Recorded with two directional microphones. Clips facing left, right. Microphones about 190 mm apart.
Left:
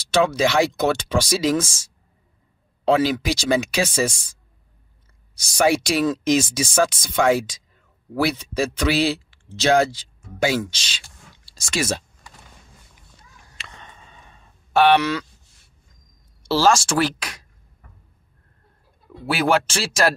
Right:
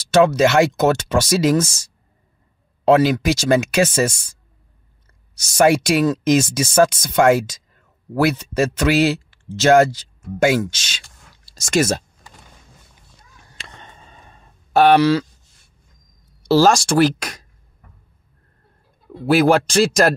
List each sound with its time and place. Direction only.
0.1 s speech: 45° right (ahead or behind)
2.9 s speech: 45° right (ahead or behind)
5.9 s speech: 45° right (ahead or behind)
13.7 s a sound: 35° right (ahead or behind)
16.4 s speech: 40° right (ahead or behind)
19.2 s speech: 40° right (ahead or behind)